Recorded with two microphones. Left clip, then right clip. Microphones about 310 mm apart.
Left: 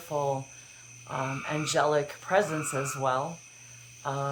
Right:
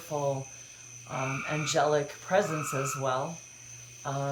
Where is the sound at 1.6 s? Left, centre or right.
Centre.